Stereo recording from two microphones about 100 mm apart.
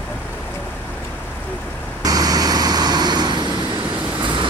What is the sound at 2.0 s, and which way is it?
Vehicle, 40° right (ahead or behind).